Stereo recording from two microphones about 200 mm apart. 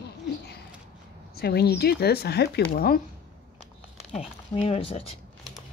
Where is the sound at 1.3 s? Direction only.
55° left (ahead or behind).